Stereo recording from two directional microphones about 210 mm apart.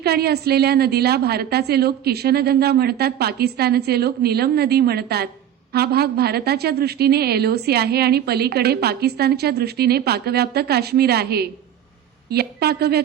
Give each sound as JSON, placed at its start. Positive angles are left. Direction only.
{"t": 0.0, "sound": "a woman's voice", "side_deg": -50}